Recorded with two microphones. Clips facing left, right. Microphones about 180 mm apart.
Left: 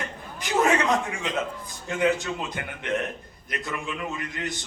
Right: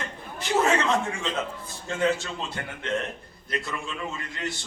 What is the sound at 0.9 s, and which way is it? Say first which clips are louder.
A man's voice: even; 15° left (ahead or behind).